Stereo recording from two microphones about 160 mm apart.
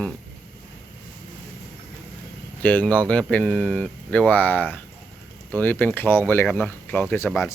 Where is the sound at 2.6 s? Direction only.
10° left (ahead or behind).